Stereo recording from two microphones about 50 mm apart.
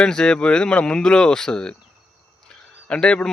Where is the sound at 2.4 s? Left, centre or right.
Centre.